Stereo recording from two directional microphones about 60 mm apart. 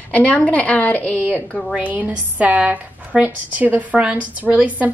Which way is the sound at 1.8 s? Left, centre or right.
Right.